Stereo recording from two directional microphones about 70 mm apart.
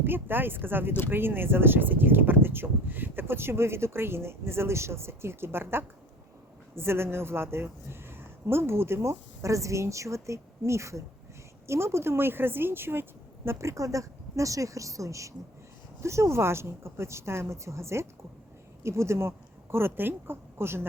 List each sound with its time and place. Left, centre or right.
0.0 s speech: right
19.7 s speech: right